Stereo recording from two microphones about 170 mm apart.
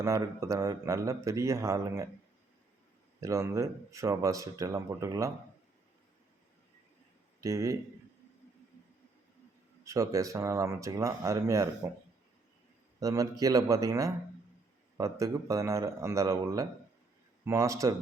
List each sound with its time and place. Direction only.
0.0 s a man's voice: 15° right (ahead or behind)
3.2 s speech: 15° right (ahead or behind)
7.4 s a man's voice: 20° right (ahead or behind)
9.8 s speech: 20° right (ahead or behind)
13.0 s a man's voice: 20° right (ahead or behind)